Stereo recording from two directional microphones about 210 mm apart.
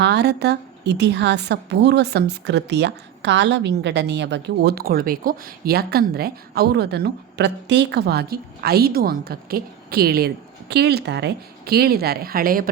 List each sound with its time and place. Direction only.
0.0 s a woman's voice: 50° right (ahead or behind)